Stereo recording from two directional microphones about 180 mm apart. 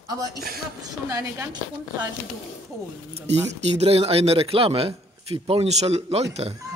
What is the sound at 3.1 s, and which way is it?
Speech, 35° right (ahead or behind).